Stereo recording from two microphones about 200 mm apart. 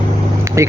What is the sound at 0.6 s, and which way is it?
Speech, 15° right (ahead or behind).